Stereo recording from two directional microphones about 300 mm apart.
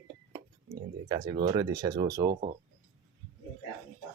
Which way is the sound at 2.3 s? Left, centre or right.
Right.